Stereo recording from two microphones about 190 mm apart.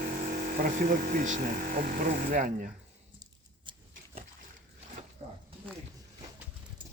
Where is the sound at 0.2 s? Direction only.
45° right (ahead or behind).